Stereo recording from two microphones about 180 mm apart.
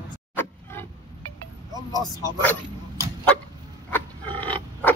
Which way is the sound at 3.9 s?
10° left (ahead or behind).